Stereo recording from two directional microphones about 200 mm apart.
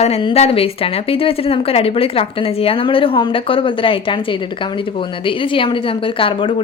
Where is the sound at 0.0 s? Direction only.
30° left (ahead or behind).